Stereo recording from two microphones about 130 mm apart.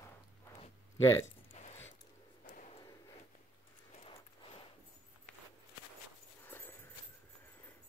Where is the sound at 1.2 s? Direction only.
60° left (ahead or behind).